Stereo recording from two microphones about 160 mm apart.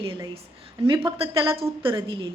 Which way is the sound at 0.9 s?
35° right (ahead or behind).